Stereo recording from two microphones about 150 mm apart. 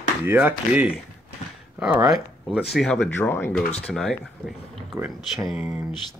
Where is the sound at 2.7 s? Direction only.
5° left (ahead or behind).